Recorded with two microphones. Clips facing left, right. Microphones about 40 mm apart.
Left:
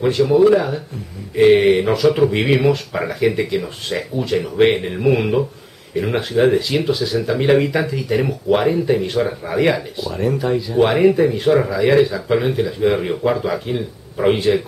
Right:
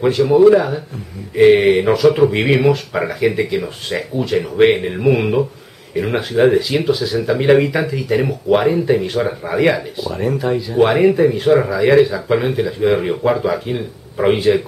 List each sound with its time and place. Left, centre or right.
0.0 s speech: centre